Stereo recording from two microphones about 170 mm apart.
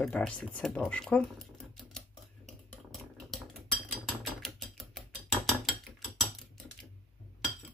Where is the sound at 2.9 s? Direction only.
Centre (ahead or behind).